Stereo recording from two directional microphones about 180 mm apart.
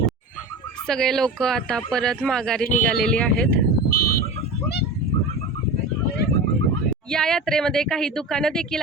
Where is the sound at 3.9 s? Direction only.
55° left (ahead or behind).